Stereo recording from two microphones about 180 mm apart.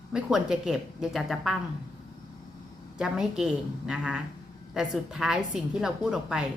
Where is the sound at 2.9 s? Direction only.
5° right (ahead or behind).